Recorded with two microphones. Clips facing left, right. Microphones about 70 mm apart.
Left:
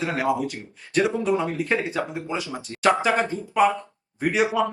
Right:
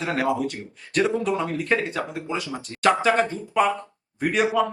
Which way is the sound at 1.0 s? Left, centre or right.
Left.